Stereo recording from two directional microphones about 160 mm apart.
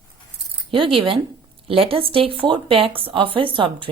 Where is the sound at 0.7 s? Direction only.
35° right (ahead or behind).